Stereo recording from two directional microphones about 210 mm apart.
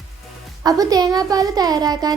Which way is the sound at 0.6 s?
15° right (ahead or behind).